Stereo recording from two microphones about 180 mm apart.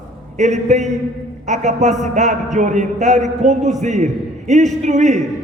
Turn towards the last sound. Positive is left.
turn(degrees=-40)  # may be behind; listen again after turning